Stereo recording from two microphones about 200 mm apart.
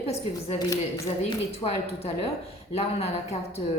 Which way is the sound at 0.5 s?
15° left (ahead or behind).